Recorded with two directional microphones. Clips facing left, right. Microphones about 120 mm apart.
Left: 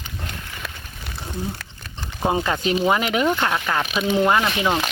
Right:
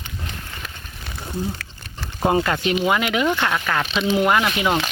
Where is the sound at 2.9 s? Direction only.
35° left (ahead or behind).